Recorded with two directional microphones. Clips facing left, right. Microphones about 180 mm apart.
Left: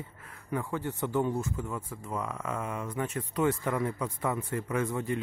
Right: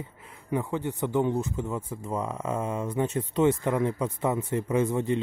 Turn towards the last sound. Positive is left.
turn(degrees=-25)  # may be behind; listen again after turning